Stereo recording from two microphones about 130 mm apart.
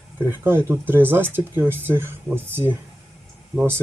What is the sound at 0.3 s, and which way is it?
Speech, 15° right (ahead or behind).